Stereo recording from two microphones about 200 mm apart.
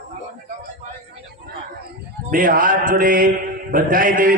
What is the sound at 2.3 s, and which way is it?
Mantra, 45° right (ahead or behind).